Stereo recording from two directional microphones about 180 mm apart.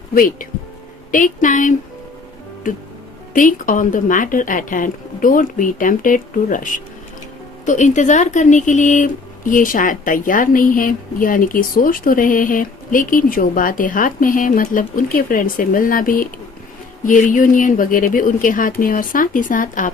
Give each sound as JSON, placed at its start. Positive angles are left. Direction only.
{"t": 0.1, "sound": "speech", "side_deg": 50}
{"t": 3.3, "sound": "speech", "side_deg": 45}